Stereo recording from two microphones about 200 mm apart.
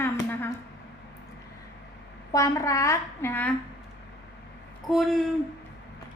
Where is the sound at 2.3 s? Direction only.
15° left (ahead or behind).